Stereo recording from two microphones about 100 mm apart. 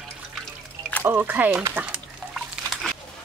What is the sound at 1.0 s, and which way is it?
Speech, 20° right (ahead or behind).